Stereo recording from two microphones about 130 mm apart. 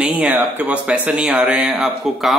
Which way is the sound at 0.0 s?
10° right (ahead or behind).